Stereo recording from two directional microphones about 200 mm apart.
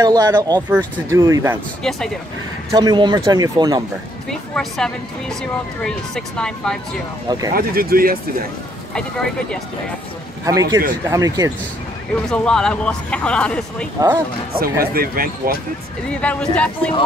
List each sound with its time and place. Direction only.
0.0 s speech: 15° right (ahead or behind)
1.8 s speech: centre (ahead or behind)
2.7 s speech: 20° right (ahead or behind)
4.3 s speech: 5° left (ahead or behind)
7.2 s speech: 20° right (ahead or behind)
7.5 s speech: 45° right (ahead or behind)
8.9 s speech: 5° left (ahead or behind)
10.4 s speech: 15° right (ahead or behind)
12.3 s speech: 5° left (ahead or behind)
13.9 s speech: 15° right (ahead or behind)
14.6 s speech: 50° right (ahead or behind)
16.1 s speech: 5° left (ahead or behind)